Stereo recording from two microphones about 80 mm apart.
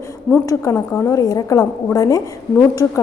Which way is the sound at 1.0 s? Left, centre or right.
Left.